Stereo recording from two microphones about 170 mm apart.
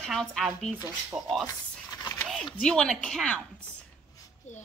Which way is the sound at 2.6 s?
5° left (ahead or behind).